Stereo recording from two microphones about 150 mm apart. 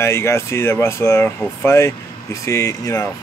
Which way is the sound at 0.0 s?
20° left (ahead or behind).